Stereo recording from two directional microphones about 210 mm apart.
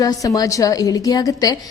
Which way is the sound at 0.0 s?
15° left (ahead or behind).